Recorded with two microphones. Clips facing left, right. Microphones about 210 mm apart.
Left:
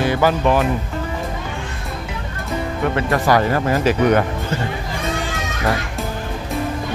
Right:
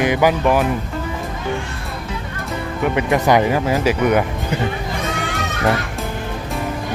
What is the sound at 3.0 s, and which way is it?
Speech, 20° right (ahead or behind).